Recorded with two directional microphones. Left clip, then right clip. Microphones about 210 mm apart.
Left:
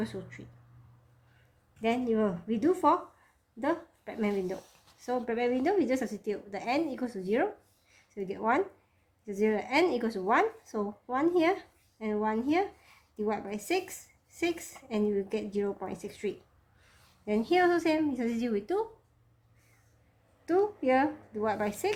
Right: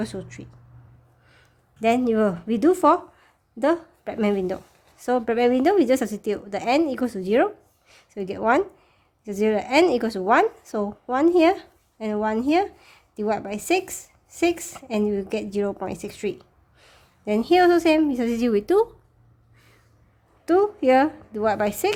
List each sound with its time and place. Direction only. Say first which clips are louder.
0.0 s a woman's voice: right 6 dB; 45° right (ahead or behind)
1.8 s a woman's voice: right 9 dB; 50° right (ahead or behind)
7.9 s a sound: right 7 dB; 45° right (ahead or behind)
9.2 s a woman's voice: right 7 dB; 45° right (ahead or behind)
20.4 s a woman's voice: right 8 dB; 50° right (ahead or behind)